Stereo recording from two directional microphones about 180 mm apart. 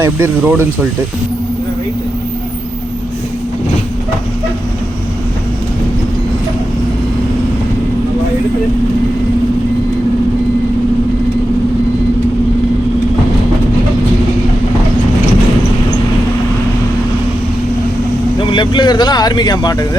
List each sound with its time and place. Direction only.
0.0 s speech: 10° right (ahead or behind)
18.3 s speech: 25° left (ahead or behind)